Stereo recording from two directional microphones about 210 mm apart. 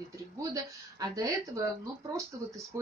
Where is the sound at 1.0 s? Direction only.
15° right (ahead or behind).